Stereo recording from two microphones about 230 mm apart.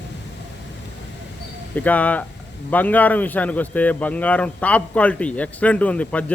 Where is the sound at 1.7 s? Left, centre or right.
Centre.